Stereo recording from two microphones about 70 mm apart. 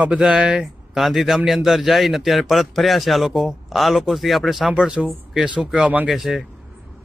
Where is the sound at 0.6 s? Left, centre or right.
Centre.